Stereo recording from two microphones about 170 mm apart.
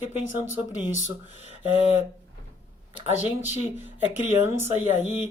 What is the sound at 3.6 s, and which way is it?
Speech, 15° right (ahead or behind).